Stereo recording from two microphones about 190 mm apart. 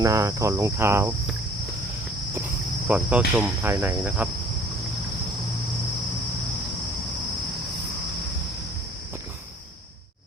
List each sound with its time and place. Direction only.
0.0 s cricket: 15° right (ahead or behind)
2.8 s cricket: 5° right (ahead or behind)